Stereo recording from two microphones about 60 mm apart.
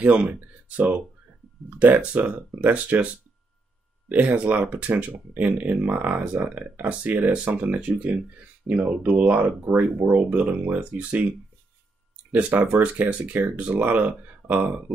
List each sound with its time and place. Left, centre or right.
0.0 s speech: right
12.3 s speech: right